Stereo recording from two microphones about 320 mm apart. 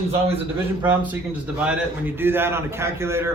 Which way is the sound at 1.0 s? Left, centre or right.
Centre.